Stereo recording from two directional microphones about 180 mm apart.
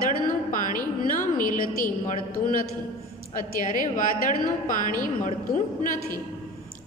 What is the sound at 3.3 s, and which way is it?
A woman's voice, 45° left (ahead or behind).